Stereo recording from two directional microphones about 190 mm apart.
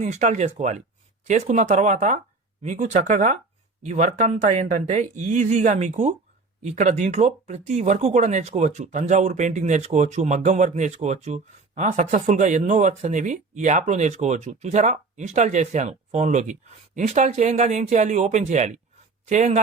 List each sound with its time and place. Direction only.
0.0 s speech: 40° right (ahead or behind)